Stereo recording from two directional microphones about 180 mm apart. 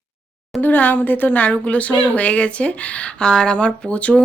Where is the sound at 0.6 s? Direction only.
10° left (ahead or behind).